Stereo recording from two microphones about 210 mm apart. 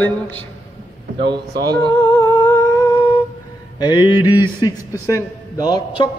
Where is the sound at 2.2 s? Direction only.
10° left (ahead or behind).